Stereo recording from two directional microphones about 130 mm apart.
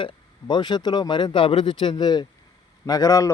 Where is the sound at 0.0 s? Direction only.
35° left (ahead or behind).